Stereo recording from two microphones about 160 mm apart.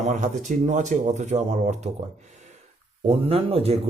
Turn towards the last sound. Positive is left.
turn(degrees=-40)  # may be behind; listen again after turning